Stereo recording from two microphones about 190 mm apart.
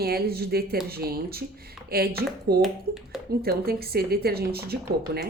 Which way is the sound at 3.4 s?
55° right (ahead or behind).